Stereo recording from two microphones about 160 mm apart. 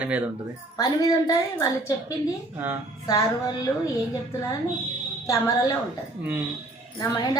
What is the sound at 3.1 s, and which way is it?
Speech, 25° left (ahead or behind).